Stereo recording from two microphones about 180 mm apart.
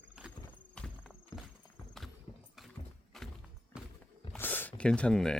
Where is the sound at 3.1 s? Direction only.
Centre (ahead or behind).